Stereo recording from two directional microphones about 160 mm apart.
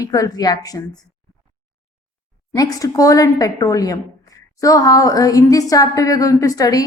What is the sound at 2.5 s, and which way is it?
A woman's voice, 25° left (ahead or behind).